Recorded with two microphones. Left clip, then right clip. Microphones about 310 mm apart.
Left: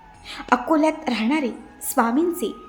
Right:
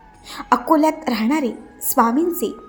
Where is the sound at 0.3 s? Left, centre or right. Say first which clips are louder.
Right 3 dB; centre.